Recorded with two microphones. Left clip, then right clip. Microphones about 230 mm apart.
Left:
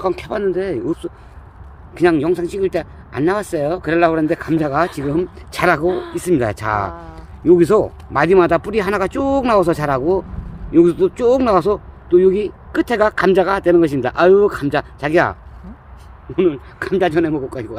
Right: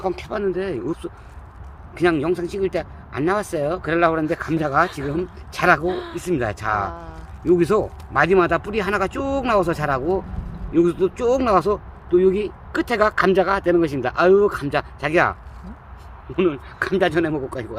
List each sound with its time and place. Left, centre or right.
0.0 s speech: left
5.8 s speech: centre
6.1 s speech: left